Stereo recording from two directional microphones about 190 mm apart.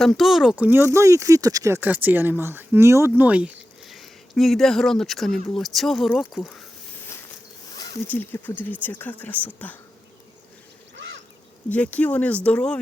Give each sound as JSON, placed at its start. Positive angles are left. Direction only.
{"t": 0.0, "sound": "speech", "side_deg": 0}
{"t": 7.8, "sound": "speech", "side_deg": 15}
{"t": 10.9, "sound": "duck", "side_deg": -70}
{"t": 11.7, "sound": "speech", "side_deg": 5}